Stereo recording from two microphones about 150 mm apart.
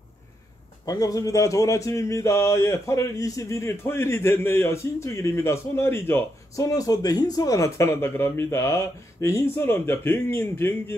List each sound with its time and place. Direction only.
0.8 s speech: 25° left (ahead or behind)